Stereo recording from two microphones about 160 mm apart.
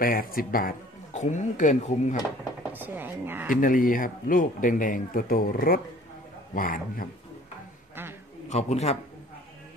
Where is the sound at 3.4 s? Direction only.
60° left (ahead or behind).